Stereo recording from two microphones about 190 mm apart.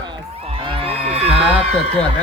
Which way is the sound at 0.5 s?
30° right (ahead or behind).